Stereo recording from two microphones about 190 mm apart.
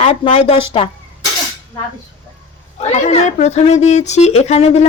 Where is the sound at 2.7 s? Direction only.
35° left (ahead or behind).